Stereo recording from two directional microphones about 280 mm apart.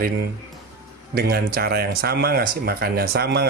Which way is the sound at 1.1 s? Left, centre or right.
Right.